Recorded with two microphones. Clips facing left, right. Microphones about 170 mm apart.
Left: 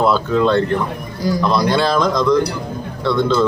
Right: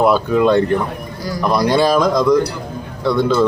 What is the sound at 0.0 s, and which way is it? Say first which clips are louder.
A man's voice: right 2 dB; 15° right (ahead or behind).